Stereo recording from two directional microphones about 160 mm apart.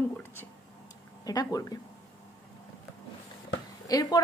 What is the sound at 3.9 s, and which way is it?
Speech, 25° left (ahead or behind).